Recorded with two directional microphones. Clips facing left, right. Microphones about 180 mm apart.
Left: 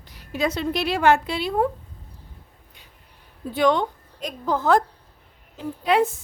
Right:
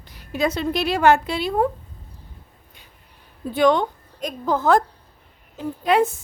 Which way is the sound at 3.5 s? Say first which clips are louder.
Right 2 dB; 50° right (ahead or behind).